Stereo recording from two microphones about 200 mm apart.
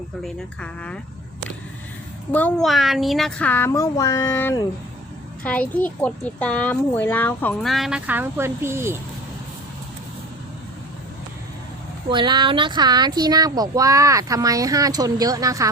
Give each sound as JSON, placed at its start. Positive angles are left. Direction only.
{"t": 0.3, "sound": "a child's voice", "side_deg": 5}
{"t": 2.3, "sound": "a child's voice", "side_deg": 5}
{"t": 12.1, "sound": "speech", "side_deg": -25}